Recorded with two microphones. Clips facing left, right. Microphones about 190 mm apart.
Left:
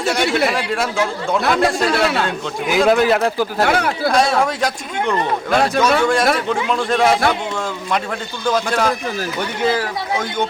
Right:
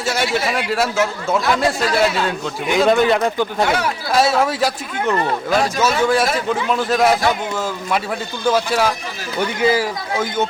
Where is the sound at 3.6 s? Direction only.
60° left (ahead or behind).